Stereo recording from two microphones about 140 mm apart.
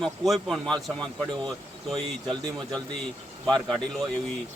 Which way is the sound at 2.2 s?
30° right (ahead or behind).